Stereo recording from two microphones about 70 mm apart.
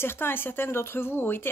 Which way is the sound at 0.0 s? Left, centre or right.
Left.